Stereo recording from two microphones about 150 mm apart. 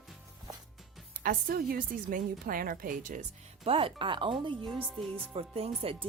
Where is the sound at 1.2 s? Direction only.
75° right (ahead or behind).